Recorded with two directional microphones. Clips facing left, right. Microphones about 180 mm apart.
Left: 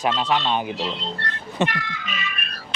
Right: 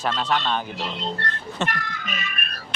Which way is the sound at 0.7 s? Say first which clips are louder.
Left 1 dB; 50° right (ahead or behind).